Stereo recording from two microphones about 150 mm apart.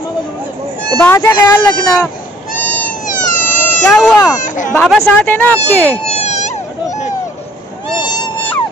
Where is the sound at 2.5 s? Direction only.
60° left (ahead or behind).